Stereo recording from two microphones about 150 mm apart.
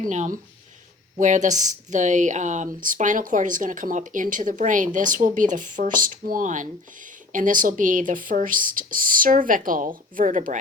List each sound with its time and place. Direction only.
0.1 s speech: 55° right (ahead or behind)